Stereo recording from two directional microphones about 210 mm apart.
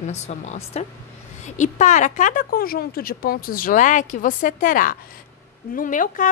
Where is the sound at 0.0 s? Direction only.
35° left (ahead or behind).